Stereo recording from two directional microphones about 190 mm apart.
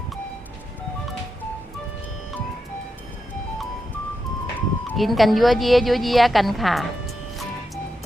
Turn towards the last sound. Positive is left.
turn(degrees=0)  # may be behind; listen again after turning